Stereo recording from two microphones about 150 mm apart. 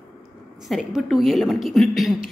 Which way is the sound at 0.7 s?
Centre (ahead or behind).